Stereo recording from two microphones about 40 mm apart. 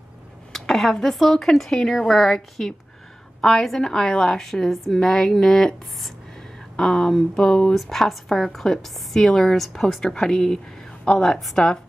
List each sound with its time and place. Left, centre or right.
0.5 s a woman's voice: centre
4.5 s a woman's voice: centre
5.0 s a woman's voice: centre
6.8 s a woman's voice: centre
7.7 s a woman's voice: centre
11.2 s a woman's voice: centre
11.5 s a woman's voice: centre